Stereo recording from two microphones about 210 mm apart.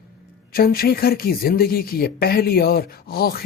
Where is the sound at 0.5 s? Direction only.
45° left (ahead or behind).